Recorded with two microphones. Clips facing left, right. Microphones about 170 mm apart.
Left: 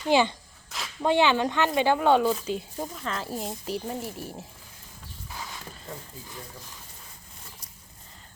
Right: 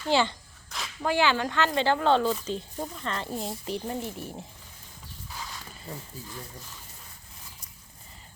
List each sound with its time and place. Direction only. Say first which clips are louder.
0.0 s speech: left 3 dB; 15° left (ahead or behind)
0.7 s a sound: even; centre (ahead or behind)
1.0 s speech: left 3 dB; 20° left (ahead or behind); by 4.4 s 5° left (ahead or behind)